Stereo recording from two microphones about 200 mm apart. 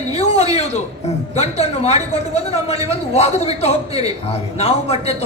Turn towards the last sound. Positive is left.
turn(degrees=30)  # may be behind; listen again after turning